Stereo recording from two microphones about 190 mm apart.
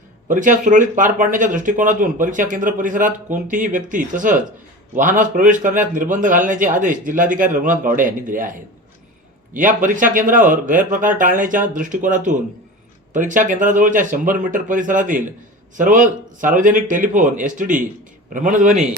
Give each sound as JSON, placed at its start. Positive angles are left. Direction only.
{"t": 0.3, "sound": "speech", "side_deg": -40}
{"t": 9.6, "sound": "speech", "side_deg": -45}